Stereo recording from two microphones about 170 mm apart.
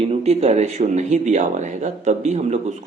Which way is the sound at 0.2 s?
40° right (ahead or behind).